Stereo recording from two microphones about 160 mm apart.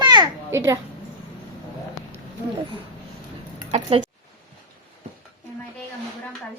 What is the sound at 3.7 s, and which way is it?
Speech, 35° right (ahead or behind).